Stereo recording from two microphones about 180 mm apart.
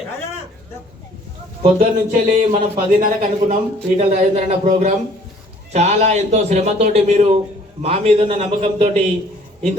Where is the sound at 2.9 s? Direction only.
50° right (ahead or behind).